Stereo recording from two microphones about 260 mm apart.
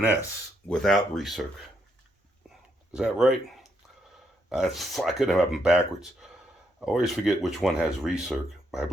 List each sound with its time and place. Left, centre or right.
0.7 s speech: centre
2.9 s speech: centre